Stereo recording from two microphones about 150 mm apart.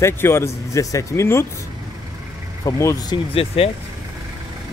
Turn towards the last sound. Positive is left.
turn(degrees=40)  # may be behind; listen again after turning